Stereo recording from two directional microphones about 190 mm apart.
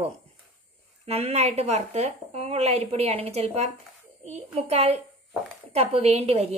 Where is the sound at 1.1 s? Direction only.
30° right (ahead or behind).